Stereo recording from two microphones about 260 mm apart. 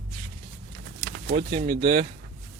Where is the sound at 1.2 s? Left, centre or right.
Right.